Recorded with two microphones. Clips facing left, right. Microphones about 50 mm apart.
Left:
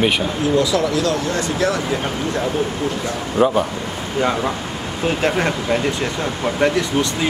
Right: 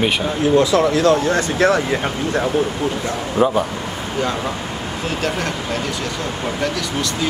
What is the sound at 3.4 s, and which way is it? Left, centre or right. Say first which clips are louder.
Speech: left 1 dB; centre.